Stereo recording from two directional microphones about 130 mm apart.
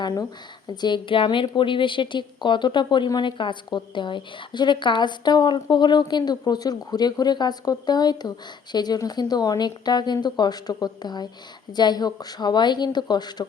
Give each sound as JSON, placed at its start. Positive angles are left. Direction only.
{"t": 0.0, "sound": "a woman's voice", "side_deg": 25}